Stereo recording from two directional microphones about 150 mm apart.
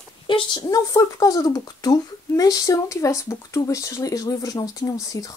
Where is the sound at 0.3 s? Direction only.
30° left (ahead or behind).